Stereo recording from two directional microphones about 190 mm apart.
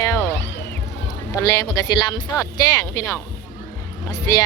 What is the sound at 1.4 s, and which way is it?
Speech, 20° left (ahead or behind).